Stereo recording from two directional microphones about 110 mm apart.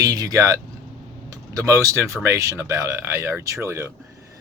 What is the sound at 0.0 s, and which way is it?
Speech, 35° right (ahead or behind).